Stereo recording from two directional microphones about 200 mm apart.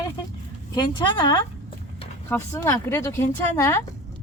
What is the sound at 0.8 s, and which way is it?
A woman's voice, 20° left (ahead or behind).